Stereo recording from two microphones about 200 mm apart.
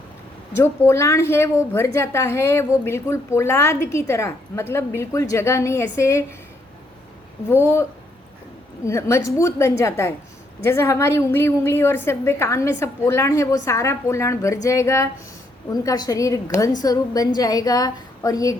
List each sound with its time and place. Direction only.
0.6 s a woman's voice: 15° left (ahead or behind)
7.5 s a woman's voice: 15° left (ahead or behind)